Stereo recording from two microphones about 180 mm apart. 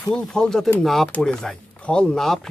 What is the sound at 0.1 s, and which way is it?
Speech, 5° left (ahead or behind).